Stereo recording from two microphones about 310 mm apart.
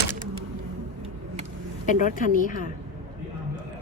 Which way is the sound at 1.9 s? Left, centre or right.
Left.